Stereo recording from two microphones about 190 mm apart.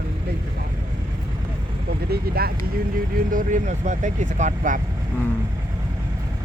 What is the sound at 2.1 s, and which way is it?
Speech, 55° right (ahead or behind).